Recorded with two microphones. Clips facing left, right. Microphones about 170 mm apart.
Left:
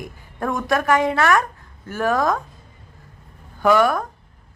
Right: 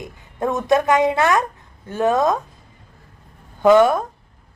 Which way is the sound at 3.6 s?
20° right (ahead or behind).